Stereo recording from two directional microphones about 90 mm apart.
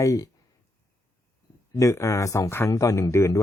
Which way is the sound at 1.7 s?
35° left (ahead or behind).